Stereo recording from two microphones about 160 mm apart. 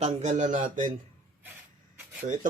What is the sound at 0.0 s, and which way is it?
Speech, 45° right (ahead or behind).